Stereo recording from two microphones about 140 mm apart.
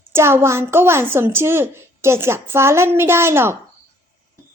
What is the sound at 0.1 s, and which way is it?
A woman's voice, 15° right (ahead or behind).